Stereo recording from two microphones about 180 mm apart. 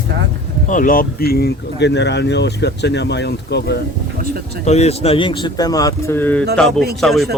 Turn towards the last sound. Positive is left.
turn(degrees=0)  # may be behind; listen again after turning